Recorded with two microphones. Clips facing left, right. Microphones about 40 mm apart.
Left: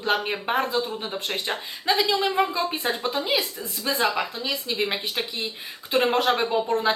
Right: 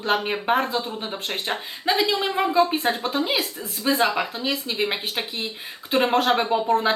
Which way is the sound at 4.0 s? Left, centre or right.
Centre.